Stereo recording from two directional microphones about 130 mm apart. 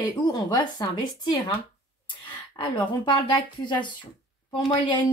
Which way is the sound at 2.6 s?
40° left (ahead or behind).